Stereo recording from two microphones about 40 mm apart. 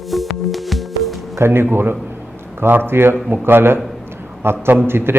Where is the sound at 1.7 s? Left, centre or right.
Right.